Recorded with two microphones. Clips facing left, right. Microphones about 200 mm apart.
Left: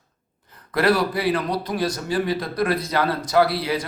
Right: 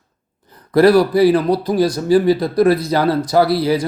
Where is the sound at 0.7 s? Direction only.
40° right (ahead or behind).